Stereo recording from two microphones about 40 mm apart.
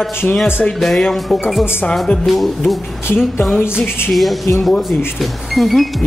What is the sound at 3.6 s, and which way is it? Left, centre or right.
Music, left.